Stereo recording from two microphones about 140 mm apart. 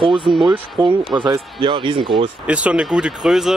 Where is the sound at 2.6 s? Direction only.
5° right (ahead or behind).